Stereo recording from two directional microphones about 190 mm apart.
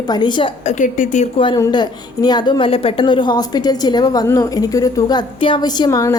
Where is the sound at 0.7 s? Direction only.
40° left (ahead or behind).